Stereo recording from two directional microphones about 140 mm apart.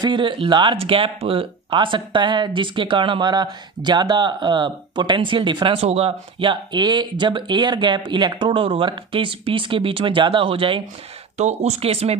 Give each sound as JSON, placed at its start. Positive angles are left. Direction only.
{"t": 0.0, "sound": "speech", "side_deg": -35}
{"t": 11.3, "sound": "speech", "side_deg": -50}